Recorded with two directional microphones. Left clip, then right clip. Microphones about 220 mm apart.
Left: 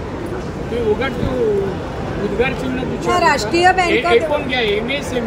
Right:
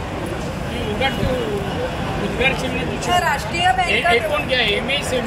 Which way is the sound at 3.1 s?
45° left (ahead or behind).